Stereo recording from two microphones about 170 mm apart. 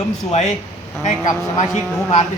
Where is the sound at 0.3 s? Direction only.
40° left (ahead or behind).